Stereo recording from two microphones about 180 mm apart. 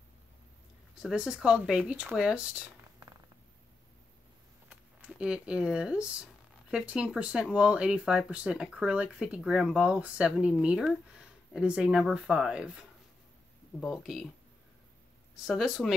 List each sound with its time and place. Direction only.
1.0 s speech: 5° right (ahead or behind)
4.6 s speech: 5° right (ahead or behind)
13.7 s speech: centre (ahead or behind)
15.4 s speech: centre (ahead or behind)